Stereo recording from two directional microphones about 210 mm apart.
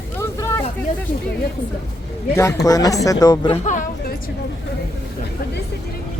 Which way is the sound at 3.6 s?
35° left (ahead or behind).